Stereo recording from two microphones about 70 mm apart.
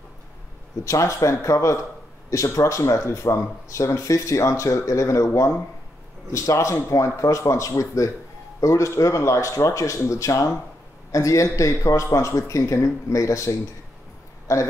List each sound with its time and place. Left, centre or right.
0.8 s speech: left